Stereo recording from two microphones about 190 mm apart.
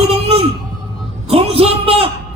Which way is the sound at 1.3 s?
30° right (ahead or behind).